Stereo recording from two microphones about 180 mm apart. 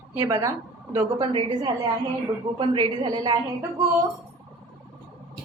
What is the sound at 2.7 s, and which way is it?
Speech, 25° right (ahead or behind).